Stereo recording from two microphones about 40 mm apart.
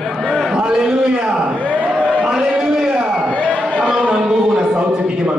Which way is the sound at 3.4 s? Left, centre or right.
Right.